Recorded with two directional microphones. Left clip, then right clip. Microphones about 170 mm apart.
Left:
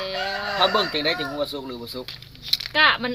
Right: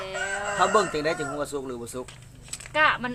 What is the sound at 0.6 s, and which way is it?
Speech, 15° right (ahead or behind).